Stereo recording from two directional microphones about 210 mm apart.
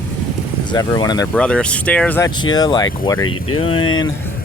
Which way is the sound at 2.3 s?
20° left (ahead or behind).